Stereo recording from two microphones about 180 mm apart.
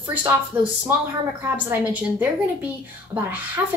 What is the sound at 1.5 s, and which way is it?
Speech, 10° right (ahead or behind).